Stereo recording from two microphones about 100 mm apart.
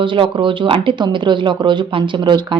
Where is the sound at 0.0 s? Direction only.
55° right (ahead or behind).